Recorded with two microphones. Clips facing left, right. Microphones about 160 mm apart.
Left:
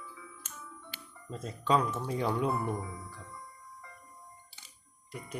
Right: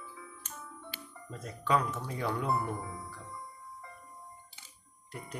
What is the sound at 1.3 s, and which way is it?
Speech, 25° left (ahead or behind).